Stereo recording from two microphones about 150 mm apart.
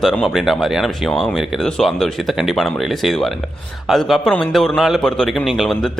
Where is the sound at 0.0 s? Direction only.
5° left (ahead or behind).